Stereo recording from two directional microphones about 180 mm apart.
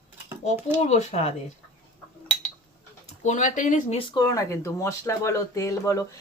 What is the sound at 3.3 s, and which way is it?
Speech, 45° left (ahead or behind).